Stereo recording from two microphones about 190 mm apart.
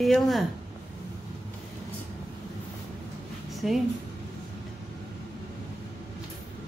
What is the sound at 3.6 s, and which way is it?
Speech, centre (ahead or behind).